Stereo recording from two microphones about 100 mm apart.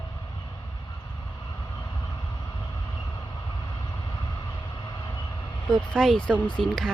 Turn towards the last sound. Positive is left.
turn(degrees=5)  # may be behind; listen again after turning